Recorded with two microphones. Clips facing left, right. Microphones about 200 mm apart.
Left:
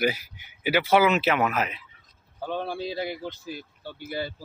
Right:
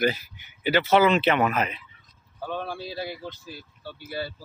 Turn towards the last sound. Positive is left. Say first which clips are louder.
# left 1 dB
turn(degrees=20)  # may be behind; listen again after turning